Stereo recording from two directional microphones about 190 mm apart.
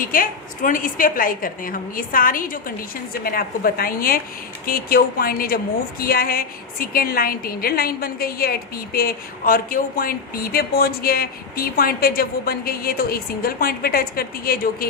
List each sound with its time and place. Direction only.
0.0 s a woman's voice: 45° left (ahead or behind)